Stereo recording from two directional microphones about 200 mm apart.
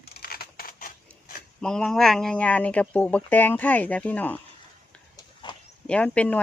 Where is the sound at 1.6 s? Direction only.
5° left (ahead or behind).